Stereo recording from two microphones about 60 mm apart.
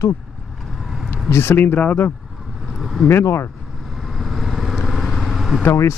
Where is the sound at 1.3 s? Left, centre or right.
Left.